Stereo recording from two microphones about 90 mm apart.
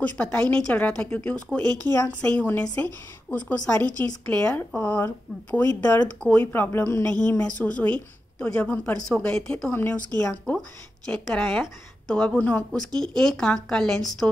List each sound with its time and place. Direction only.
0.0 s a woman's voice: 15° left (ahead or behind)
7.1 s a woman's voice: 15° left (ahead or behind)
9.7 s a woman's voice: 20° left (ahead or behind); by 14.3 s 5° left (ahead or behind)